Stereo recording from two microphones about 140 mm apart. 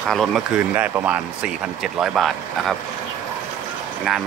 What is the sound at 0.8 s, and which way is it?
Speech, 10° right (ahead or behind).